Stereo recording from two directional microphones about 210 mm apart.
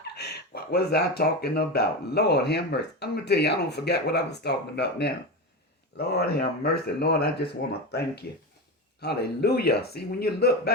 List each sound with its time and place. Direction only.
0.0 s speech: 50° left (ahead or behind)